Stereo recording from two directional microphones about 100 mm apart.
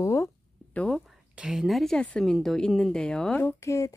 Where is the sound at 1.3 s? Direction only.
5° right (ahead or behind); by 3.4 s 10° left (ahead or behind).